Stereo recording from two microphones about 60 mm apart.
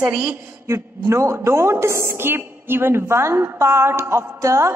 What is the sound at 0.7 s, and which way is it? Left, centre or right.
A woman's voice, right.